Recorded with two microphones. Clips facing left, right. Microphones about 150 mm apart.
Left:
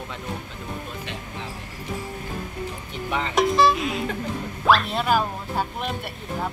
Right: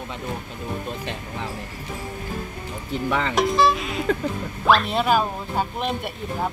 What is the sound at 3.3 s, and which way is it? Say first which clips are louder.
Speech: left 2 dB; centre (ahead or behind).